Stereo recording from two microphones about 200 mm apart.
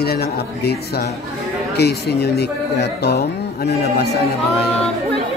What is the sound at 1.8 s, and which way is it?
A man's voice, 55° left (ahead or behind).